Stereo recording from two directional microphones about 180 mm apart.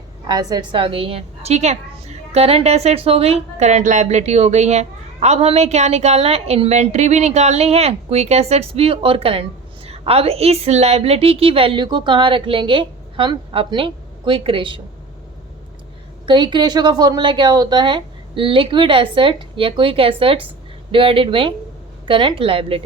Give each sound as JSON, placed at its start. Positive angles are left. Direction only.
{"t": 0.3, "sound": "a woman's voice", "side_deg": -20}
{"t": 16.2, "sound": "a woman's voice", "side_deg": -25}